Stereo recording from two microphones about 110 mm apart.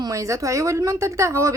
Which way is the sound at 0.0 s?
30° right (ahead or behind).